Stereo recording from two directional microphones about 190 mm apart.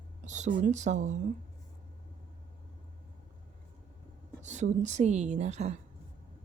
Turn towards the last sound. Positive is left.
turn(degrees=-35)  # may be behind; listen again after turning